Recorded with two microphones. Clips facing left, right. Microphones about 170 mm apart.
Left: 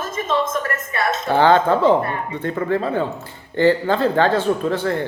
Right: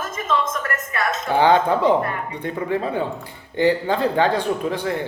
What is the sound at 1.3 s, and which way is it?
Speech, 15° right (ahead or behind).